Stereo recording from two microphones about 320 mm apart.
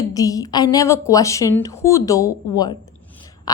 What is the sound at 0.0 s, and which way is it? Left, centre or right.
A woman's voice, centre.